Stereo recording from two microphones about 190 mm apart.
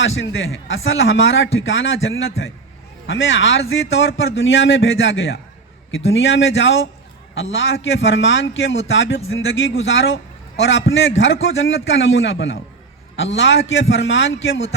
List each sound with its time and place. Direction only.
0.0 s speech: 90° left
8.9 s speech: 70° left (ahead or behind)